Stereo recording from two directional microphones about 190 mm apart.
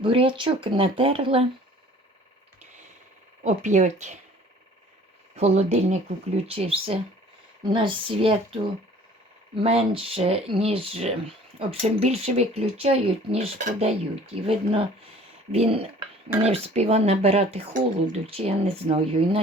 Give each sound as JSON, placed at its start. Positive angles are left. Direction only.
{"t": 0.0, "sound": "speech", "side_deg": -30}
{"t": 3.4, "sound": "speech", "side_deg": -40}
{"t": 5.3, "sound": "speech", "side_deg": -35}